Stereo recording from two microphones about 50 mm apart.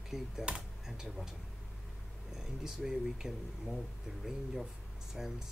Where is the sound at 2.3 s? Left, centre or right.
Centre.